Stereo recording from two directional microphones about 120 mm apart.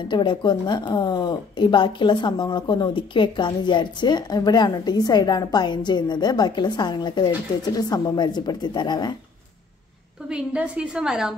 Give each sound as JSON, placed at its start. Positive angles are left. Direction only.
{"t": 0.0, "sound": "a woman's voice", "side_deg": 40}
{"t": 10.2, "sound": "a woman's voice", "side_deg": -5}